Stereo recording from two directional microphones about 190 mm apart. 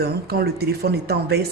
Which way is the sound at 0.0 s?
55° right (ahead or behind).